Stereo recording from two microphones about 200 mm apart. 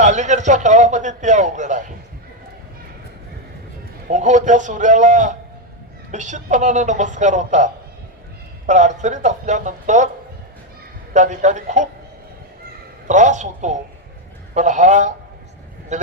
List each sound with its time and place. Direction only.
0.0 s a man's voice: 35° right (ahead or behind)
4.1 s a man's voice: 40° right (ahead or behind)
11.1 s a man's voice: 35° right (ahead or behind)
13.1 s a man's voice: 35° right (ahead or behind)